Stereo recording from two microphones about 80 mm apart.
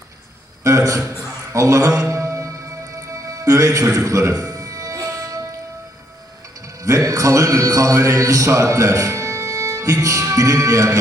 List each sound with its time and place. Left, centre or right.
0.6 s a sound: right
1.5 s music: right
6.8 s a man's voice: right